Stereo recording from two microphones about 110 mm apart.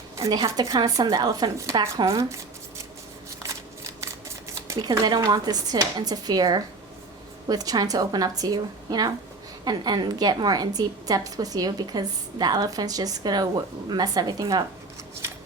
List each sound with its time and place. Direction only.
0.2 s a woman's voice: 35° right (ahead or behind)
2.0 s a sound: 30° right (ahead or behind)
4.8 s a woman's voice: 40° right (ahead or behind)